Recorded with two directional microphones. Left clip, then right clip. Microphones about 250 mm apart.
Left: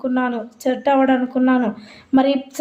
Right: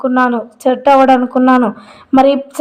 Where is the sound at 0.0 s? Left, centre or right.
Centre.